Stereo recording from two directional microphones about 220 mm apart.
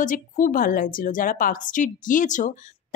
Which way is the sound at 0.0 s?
35° left (ahead or behind).